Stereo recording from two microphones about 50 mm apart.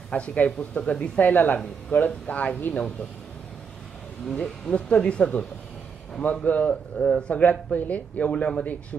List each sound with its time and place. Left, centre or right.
0.1 s a man's voice: left
4.3 s a man's voice: centre